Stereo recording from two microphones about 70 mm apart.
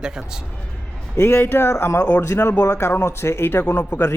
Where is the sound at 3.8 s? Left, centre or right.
Left.